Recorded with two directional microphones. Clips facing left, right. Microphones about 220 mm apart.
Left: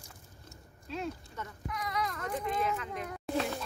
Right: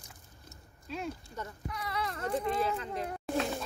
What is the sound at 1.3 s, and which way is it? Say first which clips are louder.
Speech: even; 35° right (ahead or behind).